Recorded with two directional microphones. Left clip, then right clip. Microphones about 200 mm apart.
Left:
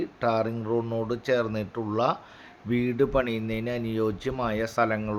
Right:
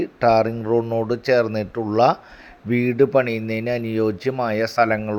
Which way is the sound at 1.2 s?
25° right (ahead or behind).